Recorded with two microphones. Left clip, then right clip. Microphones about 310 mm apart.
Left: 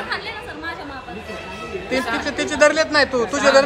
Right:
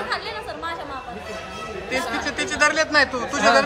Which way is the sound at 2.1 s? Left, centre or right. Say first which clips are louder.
Left 4 dB; centre.